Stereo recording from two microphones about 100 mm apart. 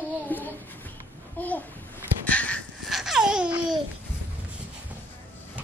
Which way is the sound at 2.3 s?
15° left (ahead or behind).